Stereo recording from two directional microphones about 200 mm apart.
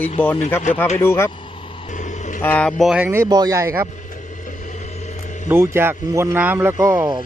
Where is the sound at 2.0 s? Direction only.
40° left (ahead or behind).